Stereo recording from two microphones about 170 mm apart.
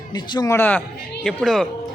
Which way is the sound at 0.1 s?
20° left (ahead or behind).